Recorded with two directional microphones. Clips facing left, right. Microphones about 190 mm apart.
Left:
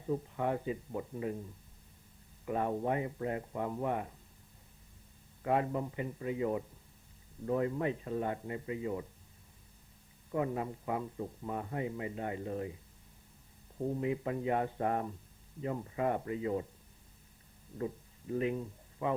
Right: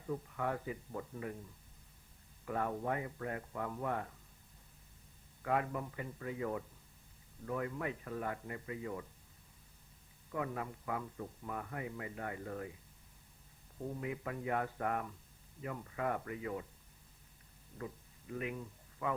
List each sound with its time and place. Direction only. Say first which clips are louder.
0.0 s speech: left 5 dB; 25° left (ahead or behind)
5.4 s speech: left 4 dB; 25° left (ahead or behind)
10.3 s speech: left 6 dB; 25° left (ahead or behind)
13.8 s speech: left 7 dB; 25° left (ahead or behind)
17.7 s speech: left 8 dB; 30° left (ahead or behind)